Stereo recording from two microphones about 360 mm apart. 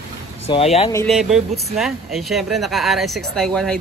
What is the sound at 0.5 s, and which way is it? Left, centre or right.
Speech, centre.